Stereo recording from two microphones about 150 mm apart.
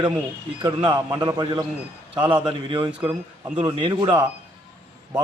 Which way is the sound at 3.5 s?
30° right (ahead or behind).